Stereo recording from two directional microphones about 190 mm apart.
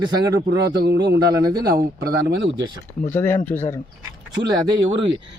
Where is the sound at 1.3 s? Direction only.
20° right (ahead or behind).